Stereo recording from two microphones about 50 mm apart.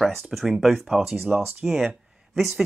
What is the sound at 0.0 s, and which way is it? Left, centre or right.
Speech, centre.